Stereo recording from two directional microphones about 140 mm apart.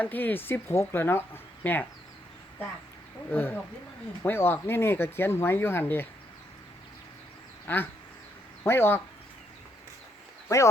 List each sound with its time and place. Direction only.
0.0 s speech: 15° left (ahead or behind)
3.2 s speech: 15° left (ahead or behind)
7.7 s speech: 15° left (ahead or behind)